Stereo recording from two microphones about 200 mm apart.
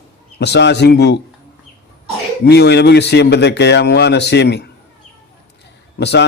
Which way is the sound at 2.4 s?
55° left (ahead or behind).